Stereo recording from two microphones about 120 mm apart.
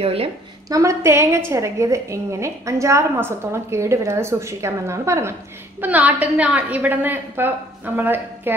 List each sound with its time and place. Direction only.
0.0 s a woman's voice: 55° right (ahead or behind)
0.7 s a woman's voice: 25° right (ahead or behind)
5.8 s a woman's voice: 15° right (ahead or behind)